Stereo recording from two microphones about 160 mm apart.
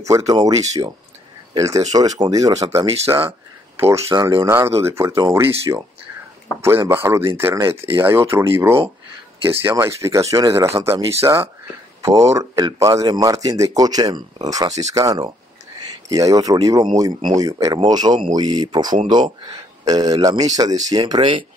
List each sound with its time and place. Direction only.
0.3 s speech: 20° right (ahead or behind)
3.9 s speech: 20° right (ahead or behind)
21.0 s speech: 35° right (ahead or behind)